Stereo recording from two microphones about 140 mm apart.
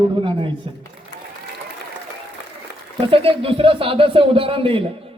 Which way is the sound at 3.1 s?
40° right (ahead or behind).